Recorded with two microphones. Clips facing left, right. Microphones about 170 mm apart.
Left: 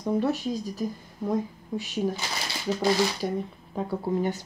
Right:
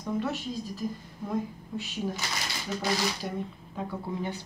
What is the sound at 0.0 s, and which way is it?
Speech, 35° left (ahead or behind).